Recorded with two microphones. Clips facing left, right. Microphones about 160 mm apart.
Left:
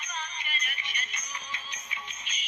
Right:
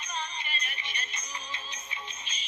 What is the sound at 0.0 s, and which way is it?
Music, 30° right (ahead or behind).